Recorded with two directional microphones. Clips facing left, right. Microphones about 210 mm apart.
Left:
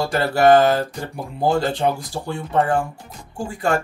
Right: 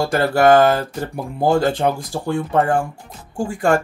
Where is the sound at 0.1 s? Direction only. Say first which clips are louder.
Even; 50° right (ahead or behind).